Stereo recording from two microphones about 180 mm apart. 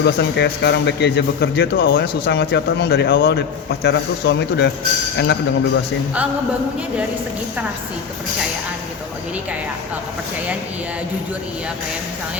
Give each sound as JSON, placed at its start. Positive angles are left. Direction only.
{"t": 0.0, "sound": "a man's voice", "side_deg": 75}
{"t": 2.0, "sound": "a man's voice", "side_deg": 80}
{"t": 3.8, "sound": "a man's voice", "side_deg": 80}
{"t": 5.1, "sound": "a man's voice", "side_deg": 70}